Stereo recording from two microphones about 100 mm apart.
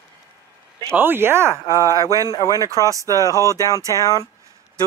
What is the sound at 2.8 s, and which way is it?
Speech, 35° left (ahead or behind).